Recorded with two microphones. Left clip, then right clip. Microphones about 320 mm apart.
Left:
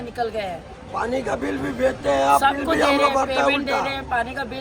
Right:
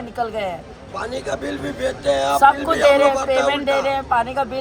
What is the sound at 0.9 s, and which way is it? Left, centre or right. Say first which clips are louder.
A man's voice: left 1 dB; left.